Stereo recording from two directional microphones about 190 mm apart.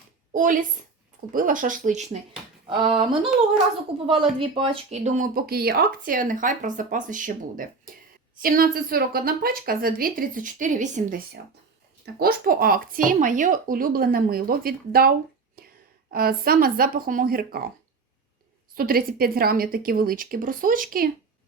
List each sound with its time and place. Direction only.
0.3 s speech: 45° right (ahead or behind)
2.6 s speech: 25° right (ahead or behind); by 11.2 s 40° right (ahead or behind)
12.2 s speech: 50° right (ahead or behind)
15.6 s whispering: 50° right (ahead or behind)
16.1 s speech: 50° right (ahead or behind)
18.7 s speech: 50° right (ahead or behind)